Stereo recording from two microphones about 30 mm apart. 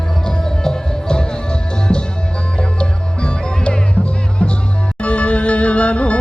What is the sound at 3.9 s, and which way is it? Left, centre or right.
Music, left.